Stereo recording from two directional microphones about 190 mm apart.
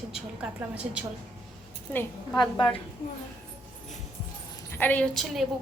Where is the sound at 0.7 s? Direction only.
5° right (ahead or behind).